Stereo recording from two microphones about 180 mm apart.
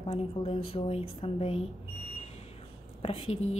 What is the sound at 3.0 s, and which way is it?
Speech, 30° left (ahead or behind).